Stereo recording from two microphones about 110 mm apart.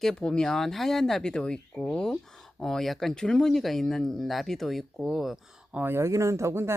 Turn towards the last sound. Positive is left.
turn(degrees=-25)  # may be behind; listen again after turning